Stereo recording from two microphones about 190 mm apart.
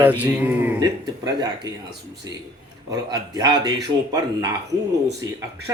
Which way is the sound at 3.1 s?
20° right (ahead or behind).